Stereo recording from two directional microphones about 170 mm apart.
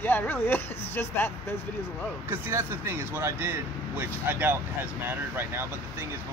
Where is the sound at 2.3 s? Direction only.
15° right (ahead or behind).